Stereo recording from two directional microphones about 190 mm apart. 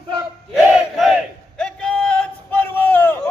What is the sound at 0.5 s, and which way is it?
Battle cry, centre (ahead or behind).